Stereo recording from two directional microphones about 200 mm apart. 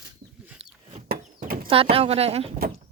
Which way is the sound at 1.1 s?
50° right (ahead or behind).